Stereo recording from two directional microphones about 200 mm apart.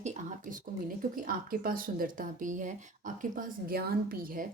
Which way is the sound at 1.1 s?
45° right (ahead or behind).